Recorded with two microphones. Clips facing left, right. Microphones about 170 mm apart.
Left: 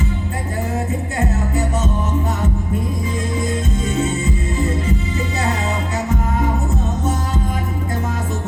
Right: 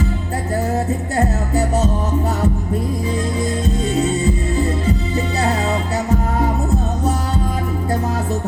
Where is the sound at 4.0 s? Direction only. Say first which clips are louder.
Right 3 dB; 35° right (ahead or behind).